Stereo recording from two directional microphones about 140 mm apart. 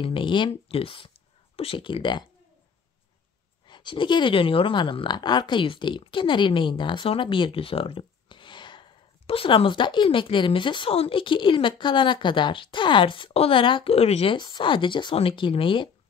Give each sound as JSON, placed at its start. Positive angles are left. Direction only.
{"t": 0.0, "sound": "speech", "side_deg": 40}
{"t": 3.6, "sound": "speech", "side_deg": 35}
{"t": 14.3, "sound": "speech", "side_deg": 30}